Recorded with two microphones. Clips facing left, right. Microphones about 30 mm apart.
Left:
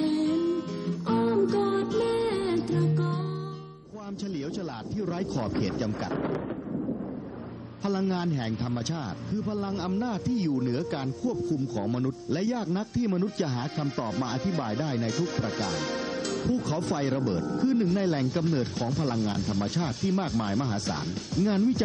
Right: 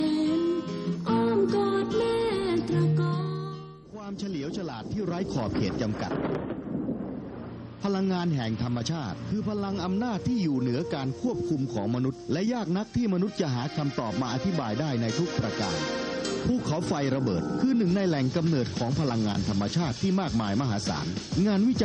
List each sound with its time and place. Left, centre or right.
0.0 s music: centre
4.9 s speech: centre
7.8 s speech: centre